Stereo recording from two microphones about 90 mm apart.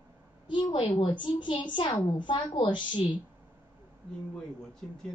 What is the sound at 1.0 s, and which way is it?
A woman's voice, 65° left (ahead or behind).